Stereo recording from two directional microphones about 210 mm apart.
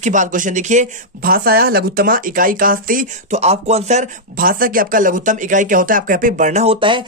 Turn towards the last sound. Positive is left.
turn(degrees=-25)  # may be behind; listen again after turning